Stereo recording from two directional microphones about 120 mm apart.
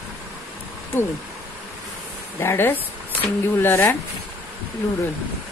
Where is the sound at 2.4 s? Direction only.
20° left (ahead or behind).